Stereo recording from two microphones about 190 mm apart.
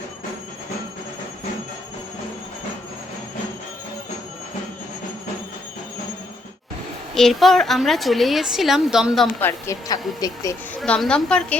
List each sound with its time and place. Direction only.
7.1 s a woman's voice: centre (ahead or behind); by 10.5 s 20° left (ahead or behind)
10.8 s a woman's voice: 5° left (ahead or behind)